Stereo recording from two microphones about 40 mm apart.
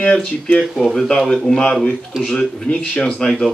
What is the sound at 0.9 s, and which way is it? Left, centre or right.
Speech, centre.